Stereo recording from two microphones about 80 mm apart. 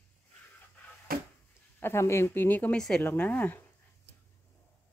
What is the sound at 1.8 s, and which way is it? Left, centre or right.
Speech, left.